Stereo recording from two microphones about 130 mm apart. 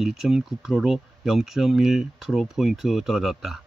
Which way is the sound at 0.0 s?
Centre (ahead or behind).